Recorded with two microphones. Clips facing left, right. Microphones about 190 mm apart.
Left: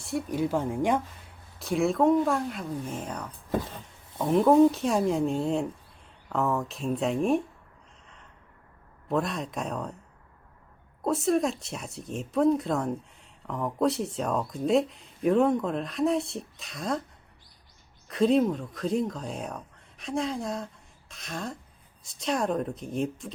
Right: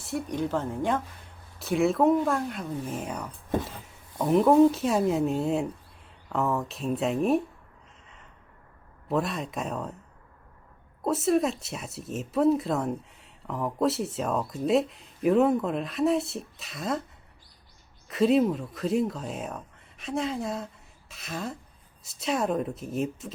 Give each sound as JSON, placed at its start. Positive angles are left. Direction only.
{"t": 0.0, "sound": "speech", "side_deg": 0}
{"t": 1.5, "sound": "speech", "side_deg": 0}
{"t": 8.0, "sound": "a sound", "side_deg": 0}
{"t": 9.0, "sound": "speech", "side_deg": 0}
{"t": 11.0, "sound": "speech", "side_deg": 0}
{"t": 18.1, "sound": "speech", "side_deg": -5}